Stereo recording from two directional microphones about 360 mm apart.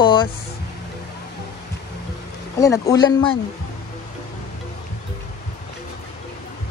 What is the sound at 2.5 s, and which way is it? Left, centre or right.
Speech, centre.